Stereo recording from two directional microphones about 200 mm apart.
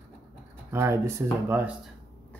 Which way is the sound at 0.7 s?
10° right (ahead or behind).